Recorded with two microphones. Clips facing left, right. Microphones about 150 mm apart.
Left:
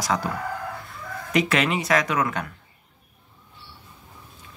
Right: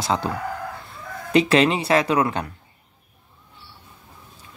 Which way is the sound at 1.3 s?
30° right (ahead or behind).